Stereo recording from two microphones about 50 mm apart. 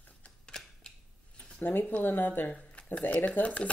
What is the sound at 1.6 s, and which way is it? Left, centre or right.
Speech, left.